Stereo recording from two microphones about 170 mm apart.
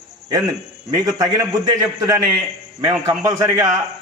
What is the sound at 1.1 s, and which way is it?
A man's voice, 20° right (ahead or behind).